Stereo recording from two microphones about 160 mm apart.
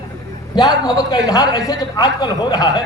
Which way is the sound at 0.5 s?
25° left (ahead or behind).